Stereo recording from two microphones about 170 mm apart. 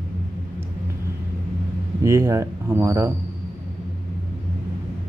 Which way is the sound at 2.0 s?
15° right (ahead or behind).